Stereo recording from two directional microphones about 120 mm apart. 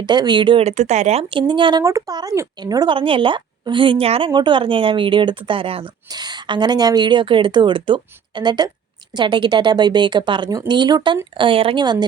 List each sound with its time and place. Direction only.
0.0 s a woman's voice: 40° right (ahead or behind)
0.6 s speech: 70° right (ahead or behind)
1.3 s a woman's voice: 45° right (ahead or behind)
1.8 s a woman's voice: 25° right (ahead or behind); by 4.3 s 55° right (ahead or behind)
4.3 s a woman's voice: 40° right (ahead or behind)
6.1 s a woman's voice: 35° right (ahead or behind)